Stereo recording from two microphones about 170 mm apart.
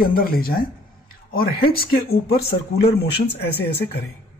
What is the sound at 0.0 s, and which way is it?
Speech, 60° left (ahead or behind).